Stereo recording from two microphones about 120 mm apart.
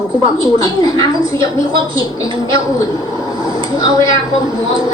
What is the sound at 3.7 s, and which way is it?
Speech, 30° left (ahead or behind).